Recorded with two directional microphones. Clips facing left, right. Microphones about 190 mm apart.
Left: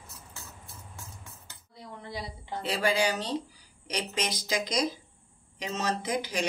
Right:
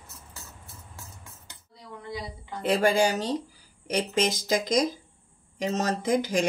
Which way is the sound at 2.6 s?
50° right (ahead or behind).